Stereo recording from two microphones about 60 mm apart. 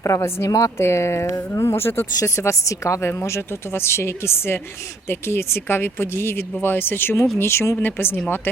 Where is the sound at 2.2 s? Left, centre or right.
Left.